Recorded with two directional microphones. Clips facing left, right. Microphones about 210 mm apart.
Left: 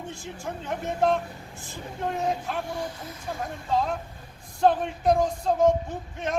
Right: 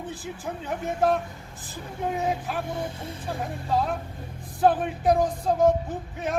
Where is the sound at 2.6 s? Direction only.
25° right (ahead or behind).